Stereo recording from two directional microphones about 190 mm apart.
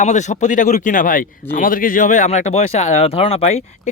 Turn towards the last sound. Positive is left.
turn(degrees=35)  # may be behind; listen again after turning